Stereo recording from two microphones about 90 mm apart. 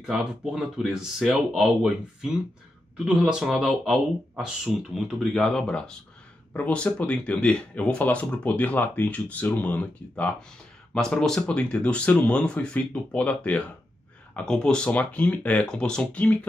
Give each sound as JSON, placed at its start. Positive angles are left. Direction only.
{"t": 0.0, "sound": "speech", "side_deg": -10}
{"t": 5.2, "sound": "speech", "side_deg": 5}